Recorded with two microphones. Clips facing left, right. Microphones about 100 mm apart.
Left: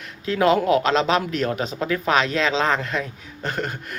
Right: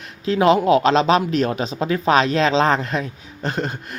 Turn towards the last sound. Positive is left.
turn(degrees=-30)  # may be behind; listen again after turning